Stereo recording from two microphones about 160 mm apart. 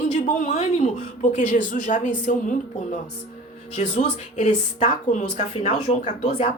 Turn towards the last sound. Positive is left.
turn(degrees=45)  # may be behind; listen again after turning